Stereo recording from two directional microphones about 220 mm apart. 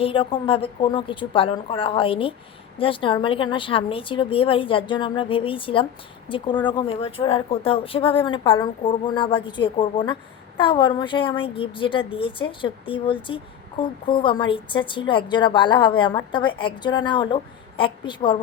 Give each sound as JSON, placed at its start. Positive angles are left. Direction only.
{"t": 0.0, "sound": "a woman's voice", "side_deg": 25}